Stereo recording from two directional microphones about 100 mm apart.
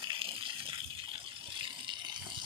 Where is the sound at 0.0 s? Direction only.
60° right (ahead or behind).